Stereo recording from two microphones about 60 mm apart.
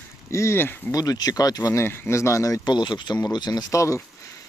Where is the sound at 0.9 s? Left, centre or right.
Left.